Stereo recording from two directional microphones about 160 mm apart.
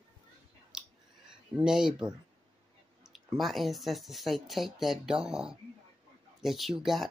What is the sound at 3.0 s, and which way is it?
Speech, centre (ahead or behind).